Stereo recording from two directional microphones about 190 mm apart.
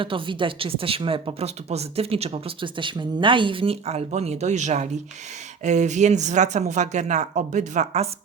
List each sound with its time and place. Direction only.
0.0 s speech: 25° right (ahead or behind)